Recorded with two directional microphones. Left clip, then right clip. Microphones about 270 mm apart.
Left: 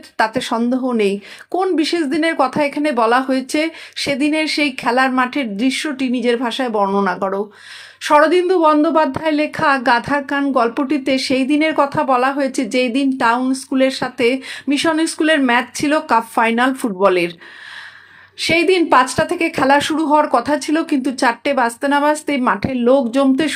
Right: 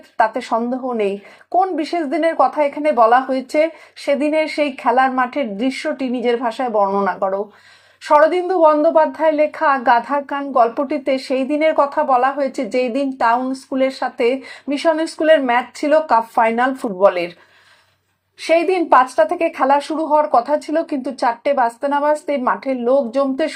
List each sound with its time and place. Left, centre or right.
0.2 s speech: left
18.3 s speech: left